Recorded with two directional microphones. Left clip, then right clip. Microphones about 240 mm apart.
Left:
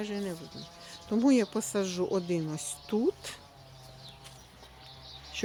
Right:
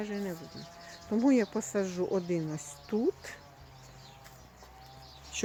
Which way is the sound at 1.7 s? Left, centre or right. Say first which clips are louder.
Even; centre.